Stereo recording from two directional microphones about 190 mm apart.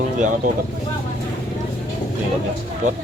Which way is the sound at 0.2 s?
40° right (ahead or behind).